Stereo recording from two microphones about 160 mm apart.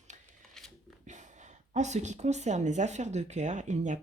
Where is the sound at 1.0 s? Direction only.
50° right (ahead or behind).